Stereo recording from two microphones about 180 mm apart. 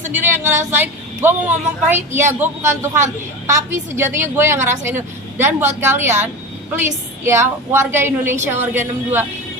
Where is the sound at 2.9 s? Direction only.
40° right (ahead or behind).